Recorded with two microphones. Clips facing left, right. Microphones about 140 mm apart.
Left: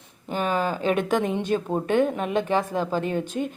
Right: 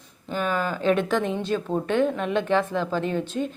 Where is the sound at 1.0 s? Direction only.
45° left (ahead or behind).